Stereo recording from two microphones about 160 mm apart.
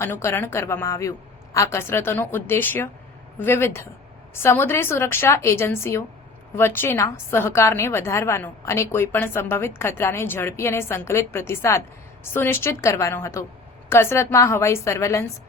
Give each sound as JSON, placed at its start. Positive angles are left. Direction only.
{"t": 0.0, "sound": "a woman's voice", "side_deg": 15}